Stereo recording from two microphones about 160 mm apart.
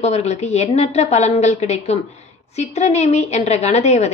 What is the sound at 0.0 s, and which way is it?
A woman's voice, 45° left (ahead or behind).